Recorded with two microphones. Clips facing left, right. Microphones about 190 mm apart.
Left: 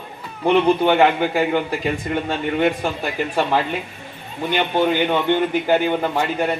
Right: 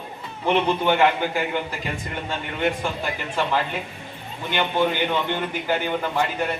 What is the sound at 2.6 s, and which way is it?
A man's voice, 45° left (ahead or behind).